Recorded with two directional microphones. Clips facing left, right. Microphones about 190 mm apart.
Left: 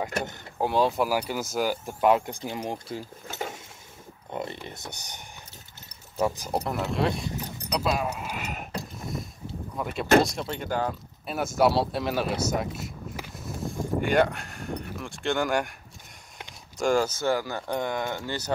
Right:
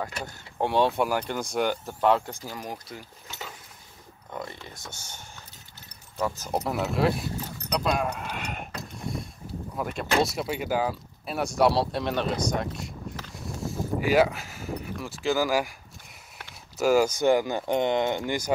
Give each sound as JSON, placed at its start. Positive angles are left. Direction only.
{"t": 0.6, "sound": "speech", "side_deg": 0}
{"t": 2.4, "sound": "speech", "side_deg": 25}
{"t": 3.3, "sound": "a sound", "side_deg": 50}
{"t": 4.3, "sound": "speech", "side_deg": 20}
{"t": 6.5, "sound": "speech", "side_deg": 0}
{"t": 7.3, "sound": "speech", "side_deg": 15}
{"t": 9.8, "sound": "speech", "side_deg": 0}
{"t": 13.3, "sound": "a sound", "side_deg": 0}
{"t": 16.7, "sound": "speech", "side_deg": -5}